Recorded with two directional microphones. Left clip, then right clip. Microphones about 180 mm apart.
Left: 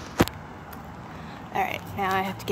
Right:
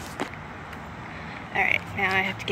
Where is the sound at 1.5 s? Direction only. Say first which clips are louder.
Right 4 dB; 15° left (ahead or behind).